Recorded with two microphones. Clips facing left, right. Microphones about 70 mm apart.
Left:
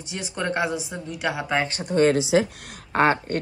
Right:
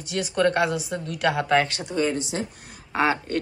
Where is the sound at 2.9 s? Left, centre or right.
Left.